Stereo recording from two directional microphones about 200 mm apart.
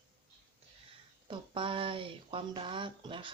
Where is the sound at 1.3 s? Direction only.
25° right (ahead or behind).